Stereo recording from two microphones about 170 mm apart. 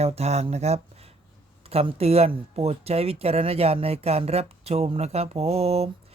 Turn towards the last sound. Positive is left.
turn(degrees=-35)  # may be behind; listen again after turning